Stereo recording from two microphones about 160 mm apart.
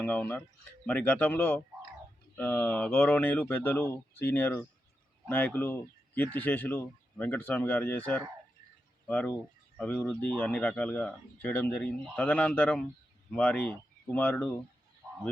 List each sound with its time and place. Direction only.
0.0 s speech: 10° left (ahead or behind)